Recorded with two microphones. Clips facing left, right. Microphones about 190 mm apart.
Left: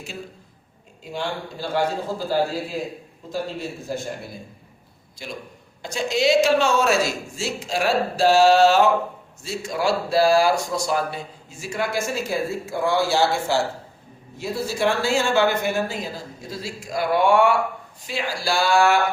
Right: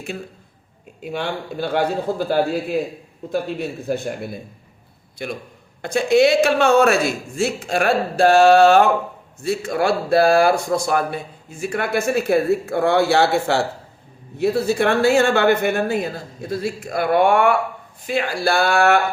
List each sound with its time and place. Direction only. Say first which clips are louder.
1.0 s speech: right 3 dB; 60° right (ahead or behind)